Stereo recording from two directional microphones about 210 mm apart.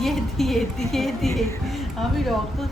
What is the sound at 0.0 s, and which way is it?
A woman's voice, centre (ahead or behind).